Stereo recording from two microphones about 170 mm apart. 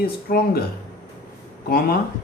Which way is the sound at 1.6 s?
65° left (ahead or behind).